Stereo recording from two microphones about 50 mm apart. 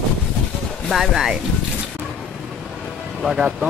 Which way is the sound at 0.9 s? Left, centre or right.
Centre.